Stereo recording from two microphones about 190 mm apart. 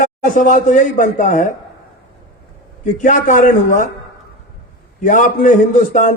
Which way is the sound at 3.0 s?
40° left (ahead or behind).